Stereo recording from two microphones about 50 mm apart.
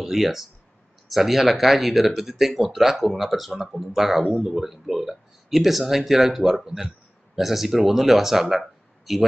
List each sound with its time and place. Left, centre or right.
0.0 s speech: centre
4.2 s speech: right
4.5 s speech: centre